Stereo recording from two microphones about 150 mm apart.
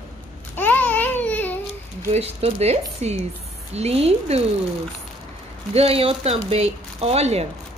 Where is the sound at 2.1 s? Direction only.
45° right (ahead or behind).